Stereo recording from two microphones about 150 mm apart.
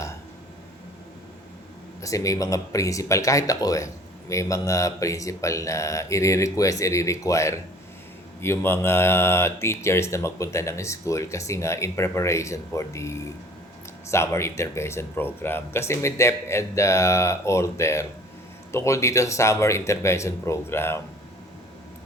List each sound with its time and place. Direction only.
2.0 s speech: 20° left (ahead or behind)